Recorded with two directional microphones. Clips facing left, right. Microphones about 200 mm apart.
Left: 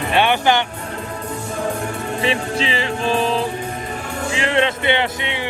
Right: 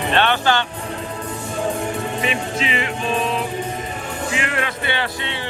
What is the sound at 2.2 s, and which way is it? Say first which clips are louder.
Music: left 6 dB; 30° left (ahead or behind).